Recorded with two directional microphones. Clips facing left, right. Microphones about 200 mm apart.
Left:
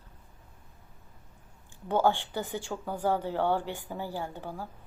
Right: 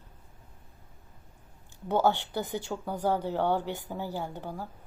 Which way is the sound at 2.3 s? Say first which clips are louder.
Right 1 dB; 15° right (ahead or behind).